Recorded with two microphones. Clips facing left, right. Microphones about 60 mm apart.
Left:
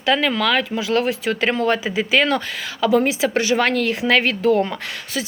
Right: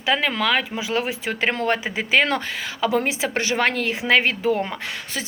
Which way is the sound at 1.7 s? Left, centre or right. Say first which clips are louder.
Left 2 dB; right.